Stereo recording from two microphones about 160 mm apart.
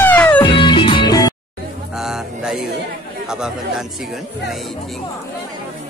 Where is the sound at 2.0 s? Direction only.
5° right (ahead or behind).